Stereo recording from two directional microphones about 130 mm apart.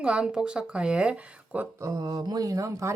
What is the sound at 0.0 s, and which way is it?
Speech, 10° right (ahead or behind).